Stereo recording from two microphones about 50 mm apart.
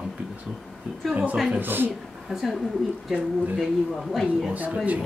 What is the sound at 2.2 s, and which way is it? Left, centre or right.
Speech, centre.